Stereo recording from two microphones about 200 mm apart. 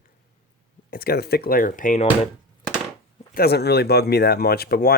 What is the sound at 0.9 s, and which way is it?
Speech, 50° left (ahead or behind).